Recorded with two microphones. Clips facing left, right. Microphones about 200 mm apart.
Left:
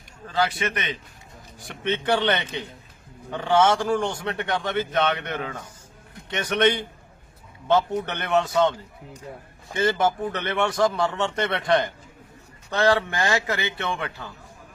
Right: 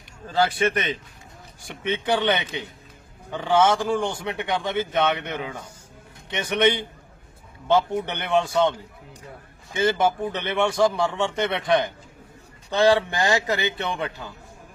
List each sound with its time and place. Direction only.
0.6 s a man's voice: 40° right (ahead or behind)
1.6 s a man's voice: 10° right (ahead or behind)
9.7 s a man's voice: 10° right (ahead or behind)